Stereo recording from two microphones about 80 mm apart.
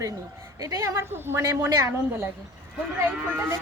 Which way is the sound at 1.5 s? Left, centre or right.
Right.